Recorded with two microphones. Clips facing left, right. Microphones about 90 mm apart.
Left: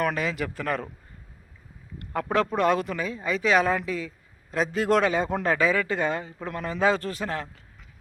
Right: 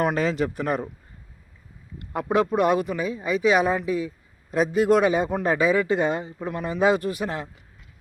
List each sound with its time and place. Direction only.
0.0 s speech: 30° right (ahead or behind)
2.3 s speech: 15° right (ahead or behind)